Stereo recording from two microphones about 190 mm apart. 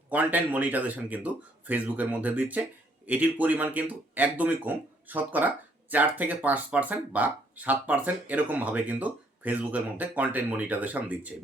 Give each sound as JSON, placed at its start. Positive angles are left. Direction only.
{"t": 0.1, "sound": "speech", "side_deg": -10}